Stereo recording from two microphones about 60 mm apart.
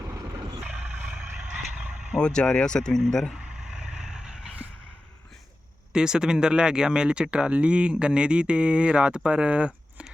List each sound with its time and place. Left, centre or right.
0.6 s vehicle: centre
2.1 s speech: centre
3.7 s vehicle: centre
5.9 s speech: centre